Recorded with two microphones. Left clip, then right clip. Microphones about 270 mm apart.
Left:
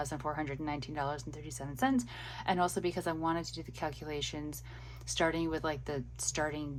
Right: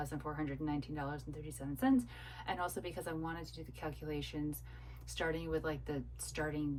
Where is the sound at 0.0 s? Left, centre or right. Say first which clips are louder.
Left 5 dB; left.